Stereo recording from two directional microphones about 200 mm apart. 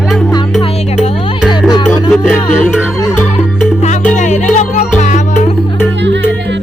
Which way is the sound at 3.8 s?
35° left (ahead or behind).